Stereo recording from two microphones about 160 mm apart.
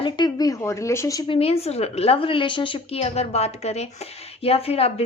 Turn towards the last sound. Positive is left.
turn(degrees=40)  # may be behind; listen again after turning